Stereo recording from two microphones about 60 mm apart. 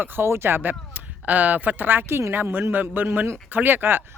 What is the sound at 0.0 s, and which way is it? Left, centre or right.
A man's voice, right.